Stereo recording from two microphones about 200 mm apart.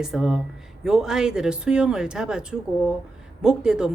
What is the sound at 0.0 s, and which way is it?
Speech, centre (ahead or behind).